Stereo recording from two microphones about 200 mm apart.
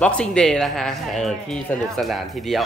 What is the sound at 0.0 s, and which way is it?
A woman's voice, 5° left (ahead or behind).